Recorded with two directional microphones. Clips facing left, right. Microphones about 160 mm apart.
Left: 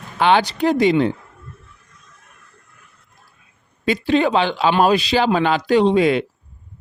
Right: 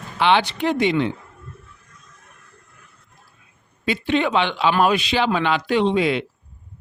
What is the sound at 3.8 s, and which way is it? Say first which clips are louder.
Speech: left 4 dB; 40° left (ahead or behind).